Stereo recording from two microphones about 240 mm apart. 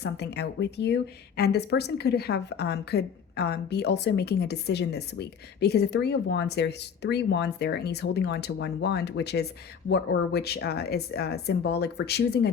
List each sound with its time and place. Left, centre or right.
0.0 s speech: left